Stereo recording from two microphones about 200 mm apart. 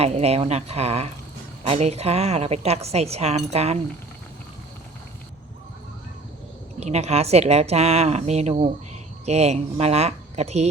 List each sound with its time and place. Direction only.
0.0 s a woman's voice: 30° right (ahead or behind)
6.7 s a woman's voice: 35° right (ahead or behind)